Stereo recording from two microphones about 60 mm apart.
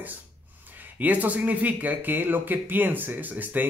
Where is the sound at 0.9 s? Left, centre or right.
Right.